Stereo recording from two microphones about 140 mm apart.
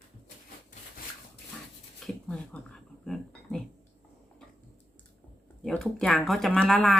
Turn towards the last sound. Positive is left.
turn(degrees=5)  # may be behind; listen again after turning